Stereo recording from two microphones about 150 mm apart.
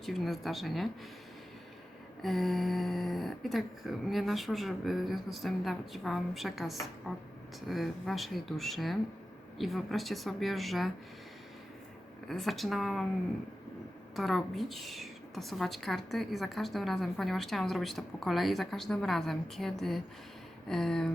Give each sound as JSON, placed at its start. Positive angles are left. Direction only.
{"t": 0.0, "sound": "a woman's voice", "side_deg": 0}
{"t": 2.2, "sound": "a woman's voice", "side_deg": 0}
{"t": 12.3, "sound": "a woman's voice", "side_deg": 0}
{"t": 14.2, "sound": "a woman's voice", "side_deg": 0}